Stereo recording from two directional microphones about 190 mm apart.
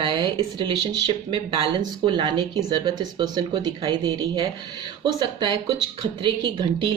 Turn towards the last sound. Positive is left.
turn(degrees=-25)  # may be behind; listen again after turning